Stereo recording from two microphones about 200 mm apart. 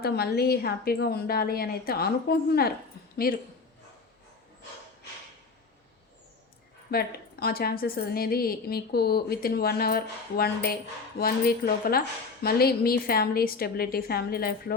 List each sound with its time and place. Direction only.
0.0 s a woman's voice: 50° left (ahead or behind)
6.9 s a woman's voice: 50° left (ahead or behind)